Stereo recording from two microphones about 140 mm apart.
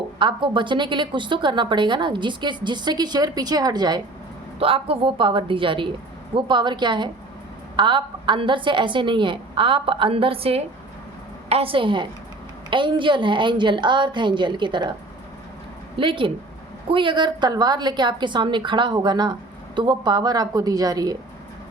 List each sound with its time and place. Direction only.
0.2 s a woman's voice: 35° right (ahead or behind)
4.6 s a woman's voice: 40° right (ahead or behind)
16.0 s a woman's voice: 35° right (ahead or behind)